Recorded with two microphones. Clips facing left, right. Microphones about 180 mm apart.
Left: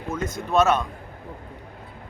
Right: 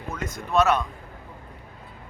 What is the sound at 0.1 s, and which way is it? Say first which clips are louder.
Speech: left 2 dB; 20° left (ahead or behind).